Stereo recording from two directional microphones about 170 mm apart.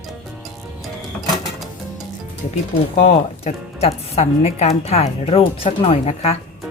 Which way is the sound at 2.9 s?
45° left (ahead or behind).